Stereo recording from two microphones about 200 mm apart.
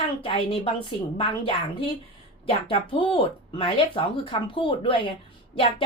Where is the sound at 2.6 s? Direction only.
25° left (ahead or behind).